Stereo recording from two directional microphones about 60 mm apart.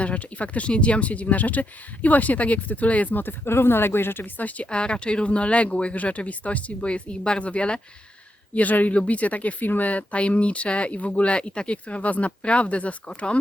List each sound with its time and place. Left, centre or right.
0.0 s speech: left